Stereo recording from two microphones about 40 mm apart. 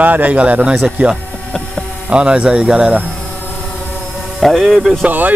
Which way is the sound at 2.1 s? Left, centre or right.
Right.